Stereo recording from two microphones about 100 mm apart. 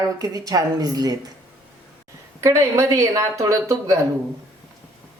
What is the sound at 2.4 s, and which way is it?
Speech, 30° right (ahead or behind).